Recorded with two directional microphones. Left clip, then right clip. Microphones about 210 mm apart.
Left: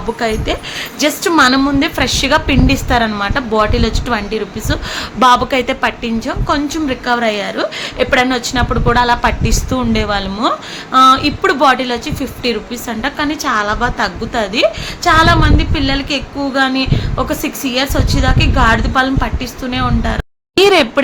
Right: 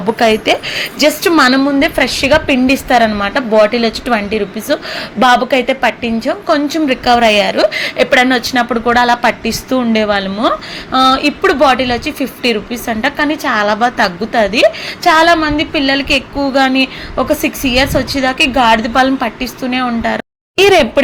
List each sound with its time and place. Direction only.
0.2 s a woman's voice: 25° right (ahead or behind)
1.5 s a woman's voice: 5° right (ahead or behind)